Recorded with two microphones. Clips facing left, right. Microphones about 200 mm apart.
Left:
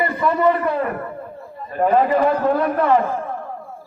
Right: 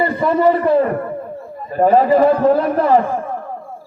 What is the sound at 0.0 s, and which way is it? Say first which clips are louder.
A man's voice: right 3 dB; 30° right (ahead or behind).